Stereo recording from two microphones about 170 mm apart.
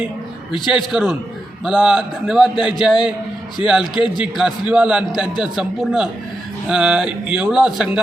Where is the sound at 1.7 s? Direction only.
5° right (ahead or behind).